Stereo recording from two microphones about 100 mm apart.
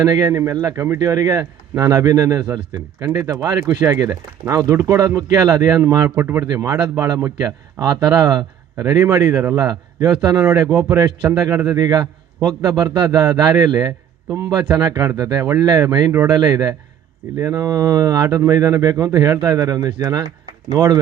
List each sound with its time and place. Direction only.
0.0 s a man's voice: 40° right (ahead or behind)
6.1 s speech: 20° right (ahead or behind)
6.4 s a man's voice: 40° right (ahead or behind)